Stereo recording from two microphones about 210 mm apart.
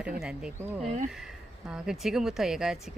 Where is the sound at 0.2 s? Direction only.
5° right (ahead or behind).